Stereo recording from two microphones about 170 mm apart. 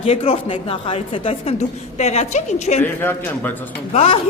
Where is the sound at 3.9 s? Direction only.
35° left (ahead or behind).